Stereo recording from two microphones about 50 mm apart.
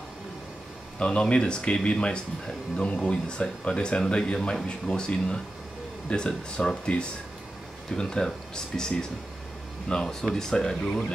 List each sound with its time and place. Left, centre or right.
0.9 s speech: centre